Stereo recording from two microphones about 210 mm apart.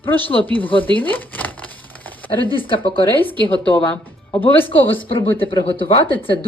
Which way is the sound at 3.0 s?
10° left (ahead or behind).